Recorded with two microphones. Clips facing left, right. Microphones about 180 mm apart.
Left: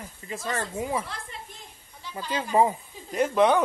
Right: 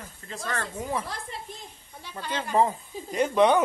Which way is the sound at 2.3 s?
5° left (ahead or behind).